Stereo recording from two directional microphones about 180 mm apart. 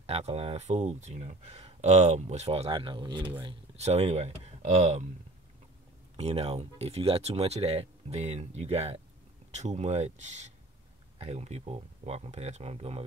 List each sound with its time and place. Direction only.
0.0 s speech: 35° right (ahead or behind)
6.1 s speech: 35° right (ahead or behind)